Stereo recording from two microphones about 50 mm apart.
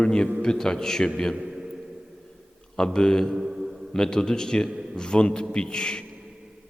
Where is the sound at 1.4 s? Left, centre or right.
Centre.